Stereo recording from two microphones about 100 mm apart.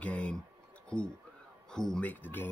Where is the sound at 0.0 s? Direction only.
10° left (ahead or behind).